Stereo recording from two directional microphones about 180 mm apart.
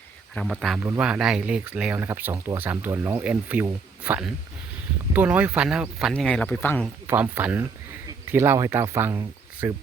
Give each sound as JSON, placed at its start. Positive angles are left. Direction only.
{"t": 0.3, "sound": "speech", "side_deg": 0}
{"t": 7.1, "sound": "speech", "side_deg": -10}